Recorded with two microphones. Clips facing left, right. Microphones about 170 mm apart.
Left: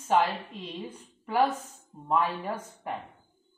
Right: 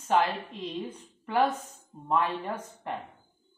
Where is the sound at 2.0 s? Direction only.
5° left (ahead or behind).